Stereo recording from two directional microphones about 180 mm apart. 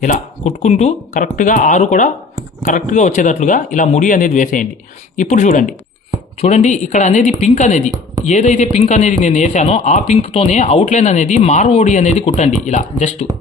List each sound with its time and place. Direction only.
0.0 s speech: 40° left (ahead or behind)